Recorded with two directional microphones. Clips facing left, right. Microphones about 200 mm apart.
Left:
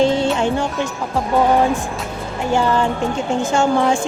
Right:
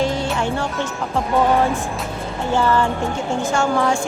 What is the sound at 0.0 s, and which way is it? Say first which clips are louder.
Music: left 5 dB; 25° left (ahead or behind).